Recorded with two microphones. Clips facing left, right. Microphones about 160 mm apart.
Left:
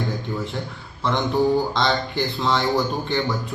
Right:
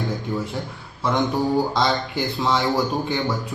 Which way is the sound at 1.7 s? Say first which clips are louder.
Even; centre (ahead or behind).